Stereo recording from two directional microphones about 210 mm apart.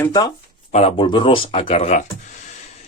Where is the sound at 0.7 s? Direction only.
30° left (ahead or behind).